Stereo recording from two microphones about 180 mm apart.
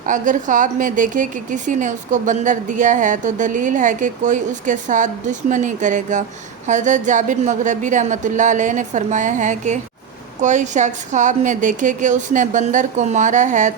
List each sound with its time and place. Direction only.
0.0 s a woman's voice: 45° right (ahead or behind)